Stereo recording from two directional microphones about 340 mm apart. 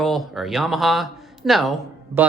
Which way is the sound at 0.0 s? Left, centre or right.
Centre.